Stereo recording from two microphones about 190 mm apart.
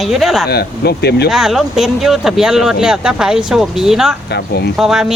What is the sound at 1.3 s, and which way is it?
Speech, centre (ahead or behind).